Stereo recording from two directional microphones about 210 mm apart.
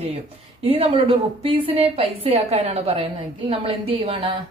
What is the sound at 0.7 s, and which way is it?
A woman's voice, 25° right (ahead or behind).